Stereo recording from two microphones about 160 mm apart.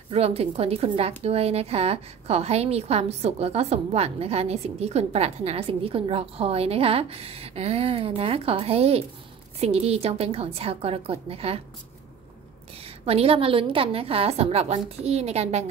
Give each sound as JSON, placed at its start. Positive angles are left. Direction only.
{"t": 0.1, "sound": "a woman's voice", "side_deg": -40}
{"t": 12.8, "sound": "a woman's voice", "side_deg": -40}